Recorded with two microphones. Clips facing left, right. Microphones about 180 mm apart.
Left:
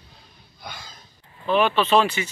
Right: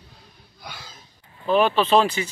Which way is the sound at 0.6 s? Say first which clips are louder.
Left 1 dB; 5° right (ahead or behind).